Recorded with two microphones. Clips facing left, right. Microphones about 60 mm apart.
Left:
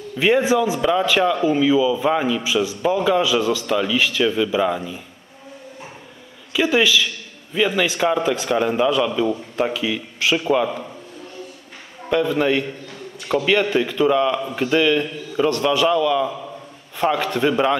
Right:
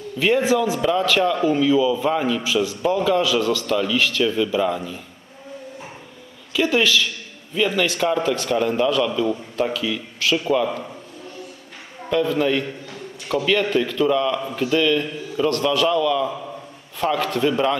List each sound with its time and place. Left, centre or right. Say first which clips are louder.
0.2 s a man's voice: left 1 dB; centre
6.5 s a man's voice: left 1 dB; centre
12.1 s a man's voice: left 1 dB; centre
17.4 s a man's voice: left 2 dB; left